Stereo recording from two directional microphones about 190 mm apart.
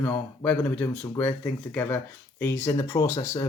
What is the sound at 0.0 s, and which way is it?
Speech, 5° left (ahead or behind).